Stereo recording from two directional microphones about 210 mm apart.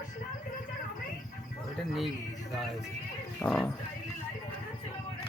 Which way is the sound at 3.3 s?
5° left (ahead or behind).